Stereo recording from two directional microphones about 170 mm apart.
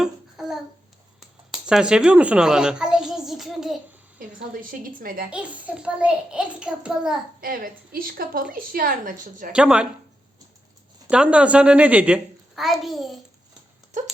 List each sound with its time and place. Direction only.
0.0 s babbling: 5° right (ahead or behind)
1.2 s speech: centre (ahead or behind)
4.5 s a woman's voice: 55° right (ahead or behind)
5.3 s a child's voice: 5° right (ahead or behind)
7.4 s a woman's voice: 55° right (ahead or behind)
9.5 s a child's voice: 5° right (ahead or behind)
11.1 s a child's voice: 5° right (ahead or behind)